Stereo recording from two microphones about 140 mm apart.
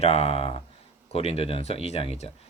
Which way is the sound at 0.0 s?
45° left (ahead or behind).